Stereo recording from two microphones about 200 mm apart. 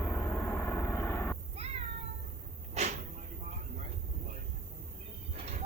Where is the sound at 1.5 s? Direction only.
30° right (ahead or behind).